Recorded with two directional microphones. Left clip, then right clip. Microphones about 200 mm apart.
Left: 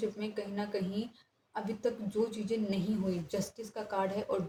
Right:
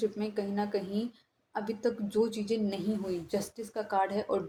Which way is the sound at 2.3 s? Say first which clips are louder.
Right 3 dB; 35° right (ahead or behind).